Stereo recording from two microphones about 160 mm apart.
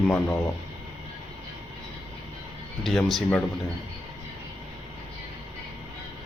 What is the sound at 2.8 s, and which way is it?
Speech, centre (ahead or behind).